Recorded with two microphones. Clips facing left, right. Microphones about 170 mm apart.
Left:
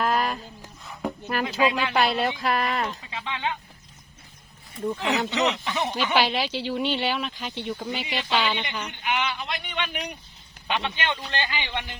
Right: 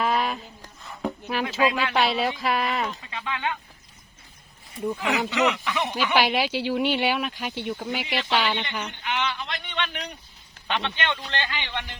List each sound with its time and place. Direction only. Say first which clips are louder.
0.0 s a sound: even; centre (ahead or behind)
1.6 s speech: even; 15° left (ahead or behind)
1.9 s speech: even; centre (ahead or behind)
3.1 s speech: right 1 dB; 20° left (ahead or behind)
4.9 s speech: right 1 dB; 20° left (ahead or behind)
6.1 s speech: right 2 dB; 10° right (ahead or behind)
8.0 s speech: even; 15° left (ahead or behind)